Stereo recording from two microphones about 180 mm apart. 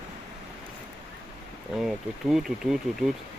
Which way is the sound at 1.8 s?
Centre (ahead or behind).